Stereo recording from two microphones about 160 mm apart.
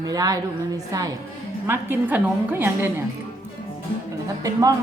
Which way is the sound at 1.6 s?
15° right (ahead or behind).